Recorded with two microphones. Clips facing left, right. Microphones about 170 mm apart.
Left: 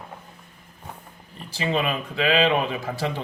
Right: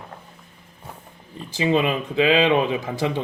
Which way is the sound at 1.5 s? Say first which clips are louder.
Right 5 dB; 20° right (ahead or behind).